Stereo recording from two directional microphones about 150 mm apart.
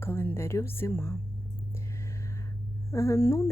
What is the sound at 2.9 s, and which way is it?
Speech, 20° left (ahead or behind).